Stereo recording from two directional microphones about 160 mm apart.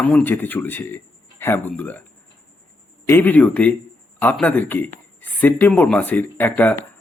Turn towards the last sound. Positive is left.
turn(degrees=10)  # may be behind; listen again after turning